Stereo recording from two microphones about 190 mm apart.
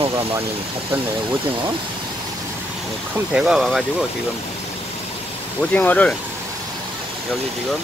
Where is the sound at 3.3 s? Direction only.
5° right (ahead or behind).